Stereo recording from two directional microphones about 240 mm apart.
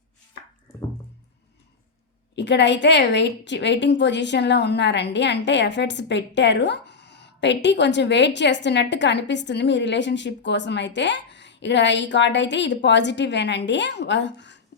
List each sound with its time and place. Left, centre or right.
2.3 s a woman's voice: left